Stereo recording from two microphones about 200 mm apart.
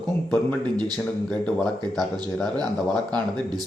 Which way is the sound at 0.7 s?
20° right (ahead or behind).